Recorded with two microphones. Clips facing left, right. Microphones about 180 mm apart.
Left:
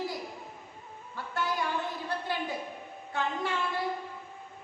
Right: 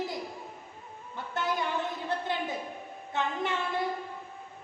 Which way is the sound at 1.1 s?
20° right (ahead or behind).